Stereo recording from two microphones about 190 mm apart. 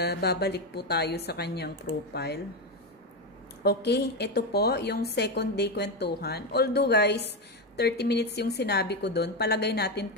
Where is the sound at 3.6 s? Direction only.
60° left (ahead or behind).